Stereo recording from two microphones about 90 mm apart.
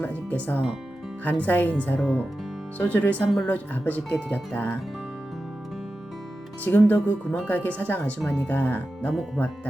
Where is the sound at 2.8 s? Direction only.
20° left (ahead or behind).